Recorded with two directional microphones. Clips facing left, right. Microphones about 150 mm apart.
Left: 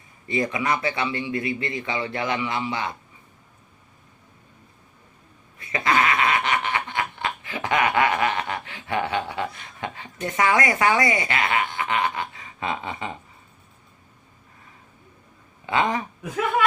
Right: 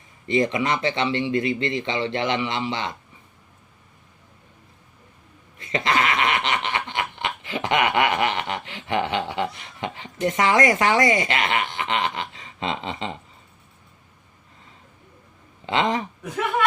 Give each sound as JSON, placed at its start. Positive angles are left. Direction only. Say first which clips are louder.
{"t": 0.3, "sound": "a man's voice", "louder": "right 3 dB", "side_deg": -20}
{"t": 5.7, "sound": "snicker", "louder": "even", "side_deg": -20}
{"t": 10.6, "sound": "speech", "louder": "right 2 dB", "side_deg": -45}
{"t": 11.3, "sound": "chuckle", "louder": "even", "side_deg": -25}
{"t": 15.6, "sound": "a man's voice", "louder": "right 1 dB", "side_deg": -25}